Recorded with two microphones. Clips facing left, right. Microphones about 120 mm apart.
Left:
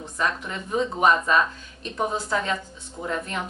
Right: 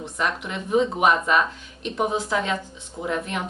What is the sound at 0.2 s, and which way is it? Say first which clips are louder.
Speech: even; 10° right (ahead or behind).